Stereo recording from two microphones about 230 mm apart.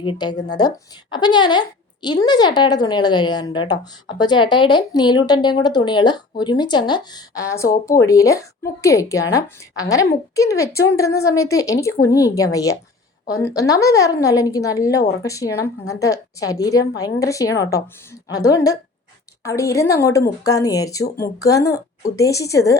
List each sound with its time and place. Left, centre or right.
0.0 s a woman's voice: centre